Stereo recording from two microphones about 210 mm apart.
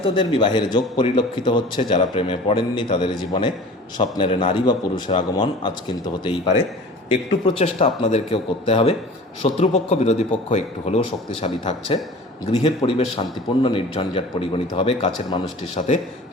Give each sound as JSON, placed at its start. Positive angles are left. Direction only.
{"t": 0.0, "sound": "a man's voice", "side_deg": 20}
{"t": 7.1, "sound": "a man's voice", "side_deg": 30}